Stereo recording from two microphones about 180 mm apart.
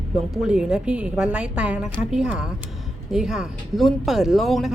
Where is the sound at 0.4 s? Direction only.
5° right (ahead or behind).